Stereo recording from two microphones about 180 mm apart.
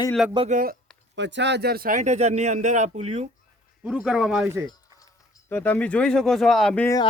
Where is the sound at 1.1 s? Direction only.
80° right; by 3.3 s 35° right (ahead or behind).